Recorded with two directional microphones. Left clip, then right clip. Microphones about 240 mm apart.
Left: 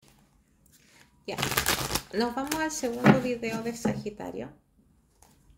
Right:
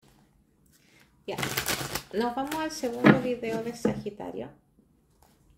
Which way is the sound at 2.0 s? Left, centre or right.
Centre.